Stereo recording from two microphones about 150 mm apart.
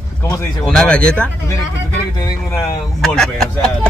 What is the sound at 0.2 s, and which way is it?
Speech, 20° left (ahead or behind).